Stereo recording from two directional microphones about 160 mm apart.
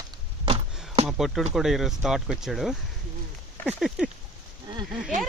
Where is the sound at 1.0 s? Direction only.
5° right (ahead or behind).